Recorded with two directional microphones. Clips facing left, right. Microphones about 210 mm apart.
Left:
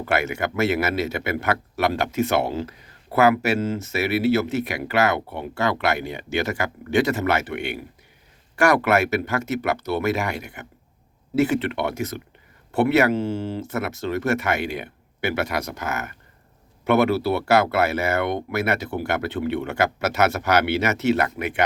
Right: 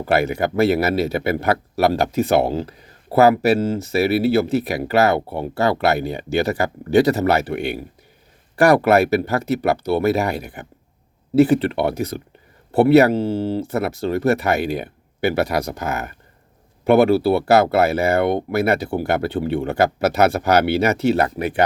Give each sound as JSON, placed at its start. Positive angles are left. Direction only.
{"t": 0.0, "sound": "speech", "side_deg": -35}